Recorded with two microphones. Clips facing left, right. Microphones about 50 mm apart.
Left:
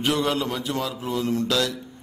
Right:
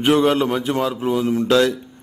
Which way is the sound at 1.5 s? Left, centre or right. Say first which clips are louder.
Right 8 dB; right.